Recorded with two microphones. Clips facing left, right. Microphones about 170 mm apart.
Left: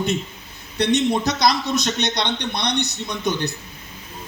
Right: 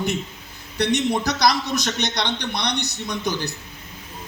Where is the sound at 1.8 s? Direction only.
20° left (ahead or behind).